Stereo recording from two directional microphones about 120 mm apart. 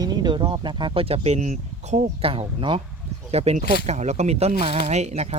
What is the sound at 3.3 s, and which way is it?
Speech, 65° right (ahead or behind).